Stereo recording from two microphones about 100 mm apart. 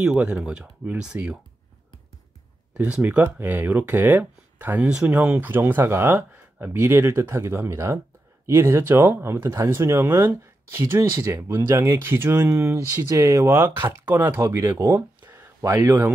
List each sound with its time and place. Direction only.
0.0 s speech: 10° right (ahead or behind)
2.7 s speech: 10° right (ahead or behind)
14.4 s speech: 30° right (ahead or behind)
14.9 s a sound: 20° right (ahead or behind)